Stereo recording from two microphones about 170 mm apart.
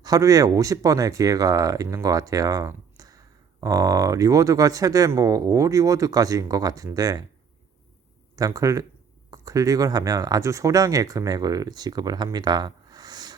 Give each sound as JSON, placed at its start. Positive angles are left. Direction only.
{"t": 0.0, "sound": "speech", "side_deg": -20}
{"t": 8.4, "sound": "speech", "side_deg": -20}